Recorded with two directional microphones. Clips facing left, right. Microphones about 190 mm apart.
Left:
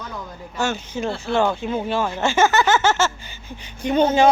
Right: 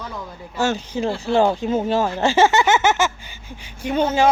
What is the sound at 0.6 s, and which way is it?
Speech, 35° right (ahead or behind).